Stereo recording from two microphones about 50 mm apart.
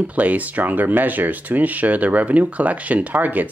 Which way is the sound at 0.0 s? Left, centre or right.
Right.